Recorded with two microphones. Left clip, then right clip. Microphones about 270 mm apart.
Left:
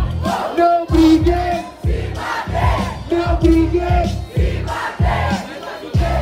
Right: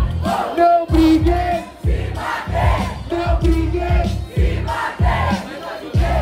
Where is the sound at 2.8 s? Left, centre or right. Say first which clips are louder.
Left 3 dB; centre.